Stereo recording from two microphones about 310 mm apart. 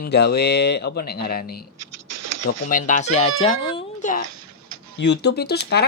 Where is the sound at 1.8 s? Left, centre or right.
Right.